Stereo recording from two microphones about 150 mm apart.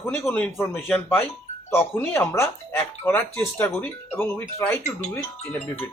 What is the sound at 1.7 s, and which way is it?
Speech, 15° left (ahead or behind).